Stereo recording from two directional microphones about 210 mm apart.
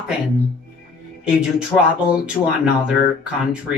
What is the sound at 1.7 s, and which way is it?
Speech, 20° left (ahead or behind).